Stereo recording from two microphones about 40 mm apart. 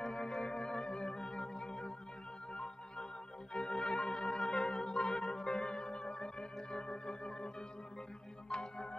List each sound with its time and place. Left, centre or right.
0.0 s organ: centre
1.5 s music: centre
8.5 s organ: centre